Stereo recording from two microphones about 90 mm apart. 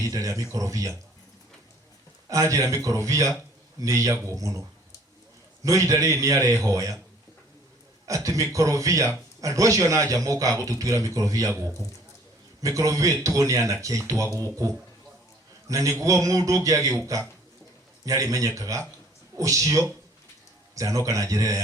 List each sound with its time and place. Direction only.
0.0 s speech: 40° right (ahead or behind)
2.3 s speech: 35° right (ahead or behind)
5.6 s speech: 40° right (ahead or behind)
8.0 s speech: 40° right (ahead or behind)
15.7 s speech: 40° right (ahead or behind)